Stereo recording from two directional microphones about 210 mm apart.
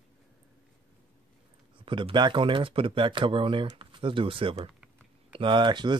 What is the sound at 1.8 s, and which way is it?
Speech, 25° right (ahead or behind).